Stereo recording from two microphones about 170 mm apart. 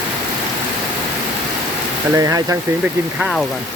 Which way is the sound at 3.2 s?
Centre (ahead or behind).